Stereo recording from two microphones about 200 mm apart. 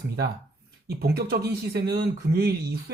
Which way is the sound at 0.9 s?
55° right (ahead or behind).